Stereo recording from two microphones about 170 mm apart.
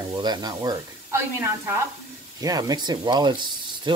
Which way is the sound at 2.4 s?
20° right (ahead or behind).